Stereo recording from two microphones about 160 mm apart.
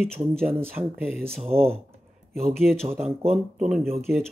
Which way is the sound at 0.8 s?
30° right (ahead or behind).